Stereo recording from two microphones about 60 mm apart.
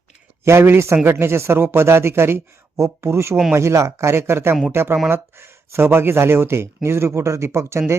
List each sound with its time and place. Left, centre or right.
0.4 s speech: right